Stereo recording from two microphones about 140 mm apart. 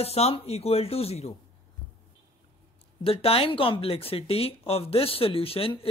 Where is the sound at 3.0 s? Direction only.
45° left (ahead or behind).